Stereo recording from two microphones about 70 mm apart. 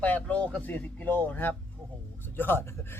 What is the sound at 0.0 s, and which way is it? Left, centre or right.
A man's voice, centre.